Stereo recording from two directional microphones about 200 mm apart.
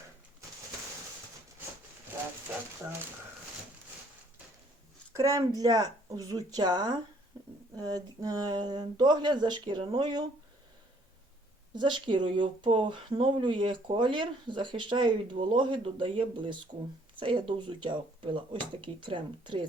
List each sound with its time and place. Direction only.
5.1 s speech: 15° right (ahead or behind)
11.7 s speech: 25° right (ahead or behind)